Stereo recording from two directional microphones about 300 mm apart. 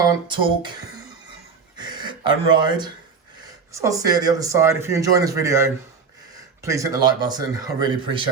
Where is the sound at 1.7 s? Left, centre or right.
Centre.